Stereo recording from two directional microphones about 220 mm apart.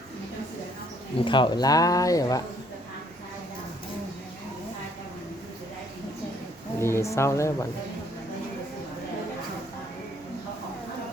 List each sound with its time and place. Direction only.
1.2 s speech: 20° left (ahead or behind)
6.7 s speech: 10° left (ahead or behind)